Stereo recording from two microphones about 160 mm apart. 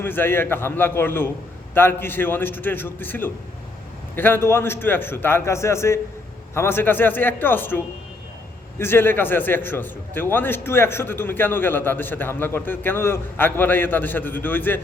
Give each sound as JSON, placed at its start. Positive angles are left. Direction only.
{"t": 0.0, "sound": "a man's voice", "side_deg": 10}